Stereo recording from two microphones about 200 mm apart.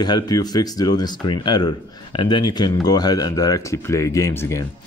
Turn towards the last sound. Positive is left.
turn(degrees=15)  # may be behind; listen again after turning